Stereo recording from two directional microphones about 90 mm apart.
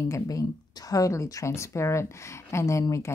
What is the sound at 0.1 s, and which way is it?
Speech, 40° left (ahead or behind).